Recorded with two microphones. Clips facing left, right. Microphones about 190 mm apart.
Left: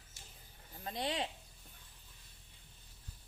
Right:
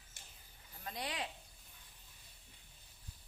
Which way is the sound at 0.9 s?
25° left (ahead or behind).